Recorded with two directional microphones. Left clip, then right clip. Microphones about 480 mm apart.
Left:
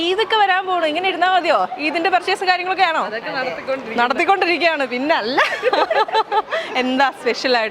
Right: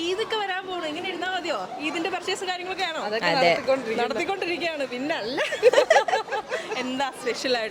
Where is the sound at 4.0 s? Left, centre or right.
Left.